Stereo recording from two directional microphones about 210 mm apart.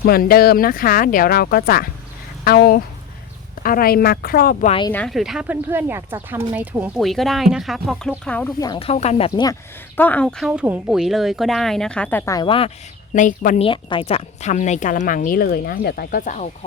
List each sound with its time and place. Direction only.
0.0 s speech: 45° left (ahead or behind)
4.9 s speech: 5° left (ahead or behind)
8.6 s speech: 25° left (ahead or behind)
10.0 s speech: 5° left (ahead or behind); by 12.7 s 25° left (ahead or behind)
13.1 s speech: 40° left (ahead or behind)
13.7 s speech: 25° left (ahead or behind); by 16.2 s 45° left (ahead or behind)
16.2 s speech: 35° left (ahead or behind)